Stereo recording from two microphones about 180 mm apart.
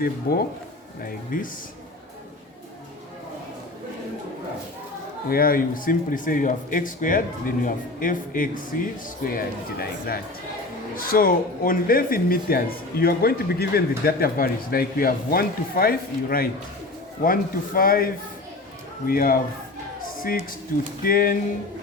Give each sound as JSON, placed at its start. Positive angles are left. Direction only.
{"t": 0.3, "sound": "a man's voice", "side_deg": 55}
{"t": 5.3, "sound": "a man's voice", "side_deg": 55}
{"t": 21.0, "sound": "a man's voice", "side_deg": 55}